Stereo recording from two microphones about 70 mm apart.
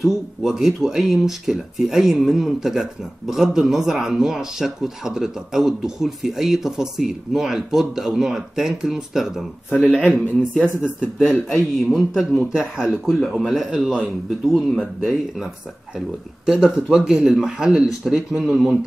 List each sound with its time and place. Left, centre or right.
0.0 s speech: centre
9.9 s a man's voice: left
11.5 s speech: centre
14.4 s speech: centre